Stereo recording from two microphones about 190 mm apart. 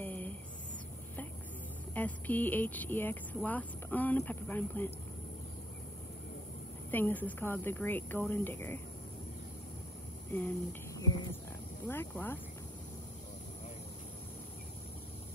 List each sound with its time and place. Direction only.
0.0 s a sound: 10° left (ahead or behind)
2.0 s speech: 10° left (ahead or behind)
6.9 s speech: 10° left (ahead or behind)
10.3 s speech: 10° left (ahead or behind)